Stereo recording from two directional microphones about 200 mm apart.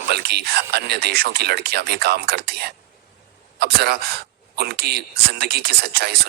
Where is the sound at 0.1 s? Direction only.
55° right (ahead or behind).